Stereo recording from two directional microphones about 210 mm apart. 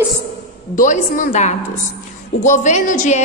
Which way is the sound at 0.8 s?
35° left (ahead or behind).